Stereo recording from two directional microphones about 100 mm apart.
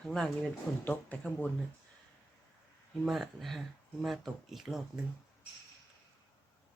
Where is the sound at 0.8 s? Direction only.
15° left (ahead or behind).